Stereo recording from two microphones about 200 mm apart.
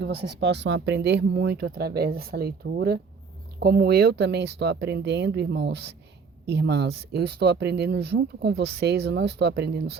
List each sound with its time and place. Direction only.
0.0 s speech: 55° right (ahead or behind)